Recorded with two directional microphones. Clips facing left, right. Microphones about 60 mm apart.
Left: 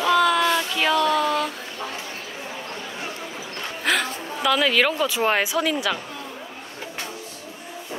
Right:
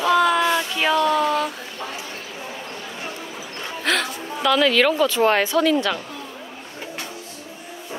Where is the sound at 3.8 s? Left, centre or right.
Centre.